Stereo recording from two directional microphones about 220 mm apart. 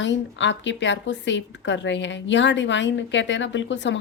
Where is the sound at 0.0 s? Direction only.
55° left (ahead or behind).